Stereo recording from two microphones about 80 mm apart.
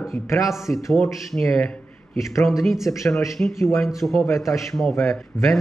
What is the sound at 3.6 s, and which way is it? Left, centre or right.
Speech, left.